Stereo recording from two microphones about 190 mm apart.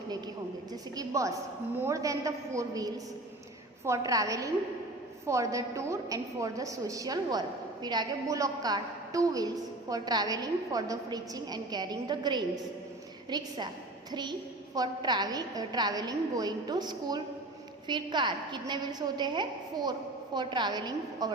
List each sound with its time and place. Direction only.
0.7 s a woman's voice: 20° right (ahead or behind)